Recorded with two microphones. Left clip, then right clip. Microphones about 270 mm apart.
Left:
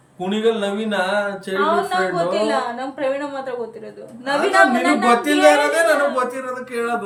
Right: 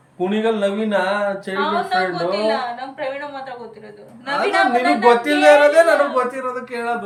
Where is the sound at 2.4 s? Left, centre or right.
Centre.